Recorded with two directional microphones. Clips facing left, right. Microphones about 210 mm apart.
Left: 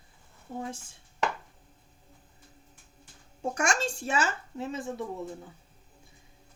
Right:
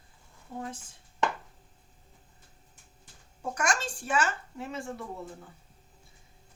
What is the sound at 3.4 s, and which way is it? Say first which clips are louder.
Speech: left 2 dB; 25° left (ahead or behind).